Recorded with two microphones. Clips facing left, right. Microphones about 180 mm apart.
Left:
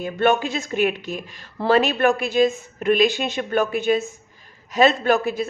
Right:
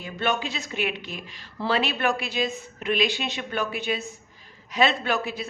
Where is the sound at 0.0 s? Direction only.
50° left (ahead or behind).